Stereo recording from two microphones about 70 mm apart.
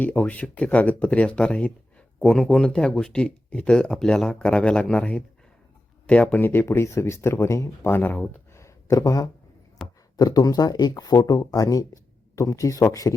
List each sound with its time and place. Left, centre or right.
0.0 s speech: left
6.3 s speech: left
7.9 s speech: left
8.5 s a sound: left
9.8 s speech: left